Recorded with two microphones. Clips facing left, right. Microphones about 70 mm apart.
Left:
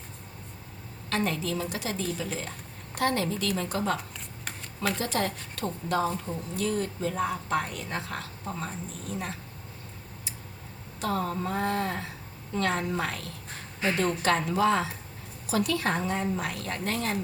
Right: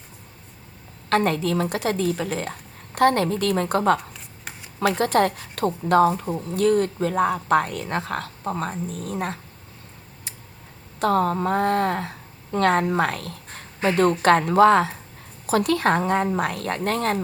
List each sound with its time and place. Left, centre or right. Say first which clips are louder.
1.1 s speech: right 8 dB; right
11.0 s speech: right 9 dB; right